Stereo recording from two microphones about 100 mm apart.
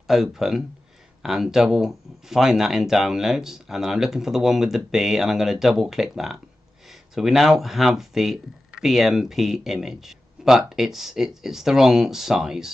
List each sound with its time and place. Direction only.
0.0 s speech: centre (ahead or behind)